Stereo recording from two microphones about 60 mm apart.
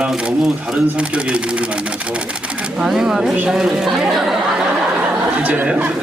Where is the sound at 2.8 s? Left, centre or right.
Centre.